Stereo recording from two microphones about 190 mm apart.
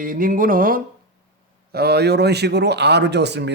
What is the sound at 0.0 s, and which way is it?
Speech, 45° right (ahead or behind).